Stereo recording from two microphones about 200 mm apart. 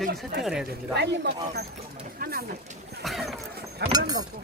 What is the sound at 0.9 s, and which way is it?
Speech, 60° right (ahead or behind).